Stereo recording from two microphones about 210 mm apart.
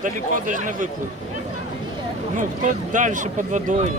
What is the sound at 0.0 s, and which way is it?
Speech, 40° right (ahead or behind).